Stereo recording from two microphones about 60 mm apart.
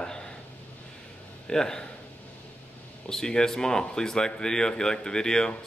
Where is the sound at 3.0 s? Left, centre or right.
Centre.